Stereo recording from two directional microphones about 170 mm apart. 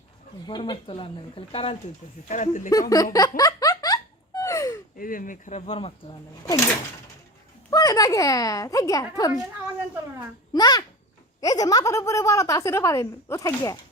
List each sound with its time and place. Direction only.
0.4 s speech: 30° left (ahead or behind)
2.2 s speech: 45° left (ahead or behind)
2.9 s a sound: 20° left (ahead or behind)
4.9 s speech: 55° left (ahead or behind); by 6.1 s 35° left (ahead or behind)
6.4 s speech: 15° left (ahead or behind)
7.7 s a woman's voice: 20° left (ahead or behind)
10.5 s a woman's voice: 25° left (ahead or behind)